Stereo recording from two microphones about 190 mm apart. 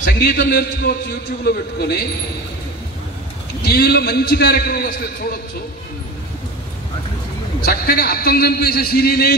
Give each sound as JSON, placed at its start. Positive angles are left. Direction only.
{"t": 0.2, "sound": "a man's voice", "side_deg": 55}
{"t": 3.6, "sound": "a man's voice", "side_deg": 55}
{"t": 7.6, "sound": "a man's voice", "side_deg": 55}